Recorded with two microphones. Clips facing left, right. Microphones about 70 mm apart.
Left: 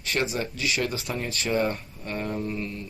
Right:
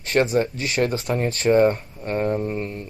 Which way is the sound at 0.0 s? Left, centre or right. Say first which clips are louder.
Right 8 dB; right.